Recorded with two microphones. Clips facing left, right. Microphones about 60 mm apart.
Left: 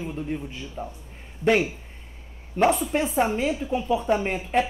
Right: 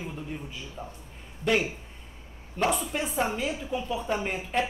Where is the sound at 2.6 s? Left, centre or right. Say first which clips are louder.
Left 6 dB; left.